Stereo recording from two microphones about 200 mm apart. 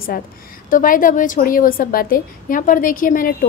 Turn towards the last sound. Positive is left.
turn(degrees=45)  # may be behind; listen again after turning